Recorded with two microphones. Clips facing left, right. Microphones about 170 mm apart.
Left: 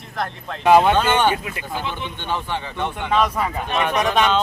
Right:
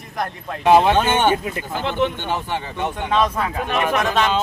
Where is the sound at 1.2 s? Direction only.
40° right (ahead or behind).